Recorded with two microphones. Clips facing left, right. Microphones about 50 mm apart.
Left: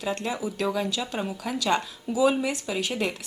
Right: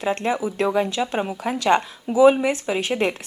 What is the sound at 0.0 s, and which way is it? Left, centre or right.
Speech, right.